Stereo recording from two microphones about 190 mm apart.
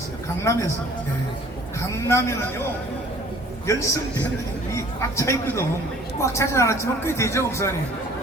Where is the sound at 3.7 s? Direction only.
15° left (ahead or behind).